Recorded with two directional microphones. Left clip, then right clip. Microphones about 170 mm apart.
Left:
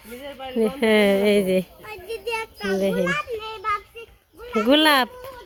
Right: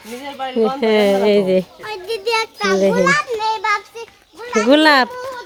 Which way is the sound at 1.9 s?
45° right (ahead or behind).